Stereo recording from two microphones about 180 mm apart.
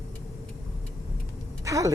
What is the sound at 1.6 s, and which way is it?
Speech, 20° right (ahead or behind).